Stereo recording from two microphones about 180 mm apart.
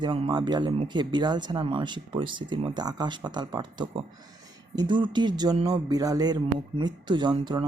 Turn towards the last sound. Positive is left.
turn(degrees=-25)  # may be behind; listen again after turning